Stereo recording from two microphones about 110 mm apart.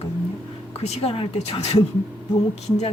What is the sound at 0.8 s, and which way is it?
A woman's voice, 70° left (ahead or behind).